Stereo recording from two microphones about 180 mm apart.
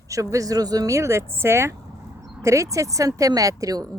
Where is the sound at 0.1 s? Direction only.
20° right (ahead or behind).